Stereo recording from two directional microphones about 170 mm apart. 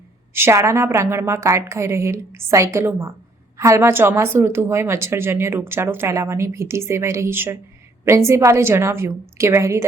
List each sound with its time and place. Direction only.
0.3 s speech: 15° right (ahead or behind)